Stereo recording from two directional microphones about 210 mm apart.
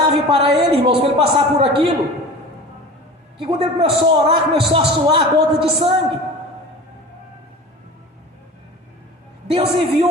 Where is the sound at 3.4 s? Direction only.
25° right (ahead or behind).